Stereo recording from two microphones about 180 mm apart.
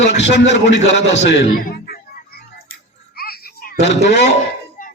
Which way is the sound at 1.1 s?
75° left (ahead or behind).